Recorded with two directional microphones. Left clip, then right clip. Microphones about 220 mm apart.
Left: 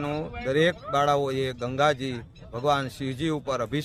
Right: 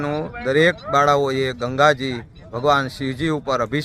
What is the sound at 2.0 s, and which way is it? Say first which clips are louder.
Speech: right 7 dB; 20° left (ahead or behind).